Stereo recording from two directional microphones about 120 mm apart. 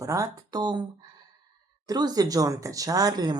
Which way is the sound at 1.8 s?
35° right (ahead or behind).